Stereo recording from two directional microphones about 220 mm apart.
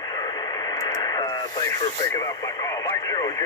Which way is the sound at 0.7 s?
15° left (ahead or behind).